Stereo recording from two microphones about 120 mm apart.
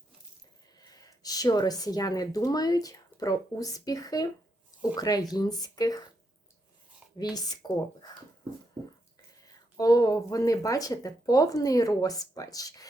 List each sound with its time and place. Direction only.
0.8 s speech: 30° left (ahead or behind)
7.1 s speech: 40° left (ahead or behind)
9.4 s speech: 30° left (ahead or behind)